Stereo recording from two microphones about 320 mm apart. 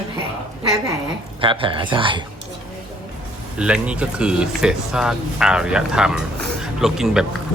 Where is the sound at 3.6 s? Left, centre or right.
Centre.